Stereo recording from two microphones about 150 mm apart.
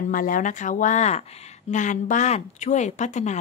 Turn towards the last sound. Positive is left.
turn(degrees=50)  # may be behind; listen again after turning